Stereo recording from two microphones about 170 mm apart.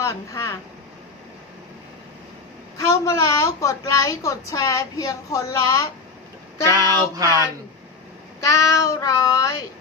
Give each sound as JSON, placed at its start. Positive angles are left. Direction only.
{"t": 0.0, "sound": "speech", "side_deg": 15}
{"t": 2.7, "sound": "a woman's voice", "side_deg": 20}
{"t": 6.7, "sound": "a sound", "side_deg": -20}
{"t": 8.4, "sound": "a woman's voice", "side_deg": 20}